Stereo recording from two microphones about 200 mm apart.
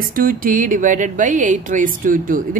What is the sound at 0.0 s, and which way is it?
Speech, 45° right (ahead or behind).